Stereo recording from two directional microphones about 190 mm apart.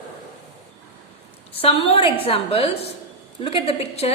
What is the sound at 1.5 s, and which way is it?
A woman's voice, 30° left (ahead or behind).